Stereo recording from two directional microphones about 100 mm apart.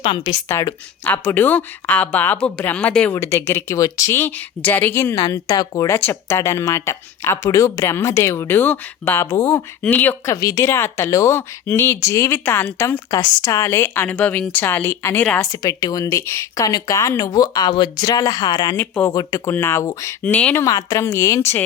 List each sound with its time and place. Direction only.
0.0 s a woman's voice: 55° left (ahead or behind)
0.4 s speech: 30° left (ahead or behind); by 3.2 s 15° left (ahead or behind)
3.2 s speech: 25° left (ahead or behind)
5.1 s speech: 35° left (ahead or behind)
5.9 s speech: 25° left (ahead or behind)
10.3 s speech: 35° left (ahead or behind)
11.9 s speech: 30° left (ahead or behind)
13.1 s speech: 40° left (ahead or behind)
15.4 s speech: 35° left (ahead or behind)
18.8 s speech: 20° left (ahead or behind)
19.1 s speech: 35° left (ahead or behind)
19.5 s speech: 25° left (ahead or behind)
20.2 s speech: 15° left (ahead or behind)
20.7 s speech: 35° left (ahead or behind)